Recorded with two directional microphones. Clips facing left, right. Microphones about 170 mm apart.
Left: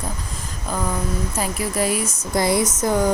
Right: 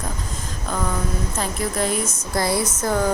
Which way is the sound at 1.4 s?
10° left (ahead or behind).